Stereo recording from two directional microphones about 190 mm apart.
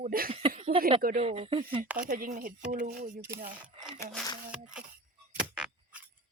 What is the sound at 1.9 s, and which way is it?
Speech, 45° right (ahead or behind).